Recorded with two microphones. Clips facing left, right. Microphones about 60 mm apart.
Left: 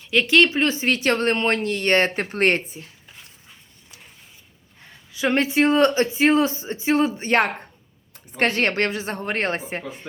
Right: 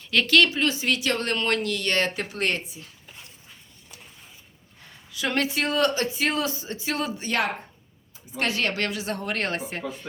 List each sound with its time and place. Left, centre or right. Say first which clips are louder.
0.0 s speech: left 3 dB; centre; by 2.8 s left
5.1 s speech: left 6 dB; left